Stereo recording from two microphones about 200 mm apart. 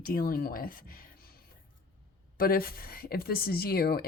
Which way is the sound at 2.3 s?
45° left (ahead or behind).